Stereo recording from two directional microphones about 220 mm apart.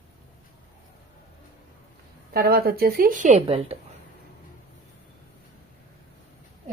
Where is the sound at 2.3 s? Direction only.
45° right (ahead or behind); by 3.8 s 25° right (ahead or behind).